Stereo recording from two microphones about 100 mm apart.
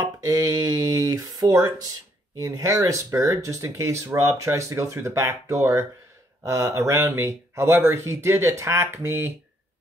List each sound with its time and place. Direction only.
0.2 s speech: 35° right (ahead or behind)